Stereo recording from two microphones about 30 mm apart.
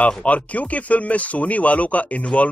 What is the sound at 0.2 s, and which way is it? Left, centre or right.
Speech, left.